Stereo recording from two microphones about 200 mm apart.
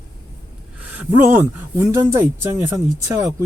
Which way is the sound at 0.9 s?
10° right (ahead or behind).